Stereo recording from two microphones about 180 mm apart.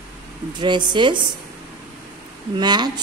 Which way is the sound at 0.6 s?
25° right (ahead or behind).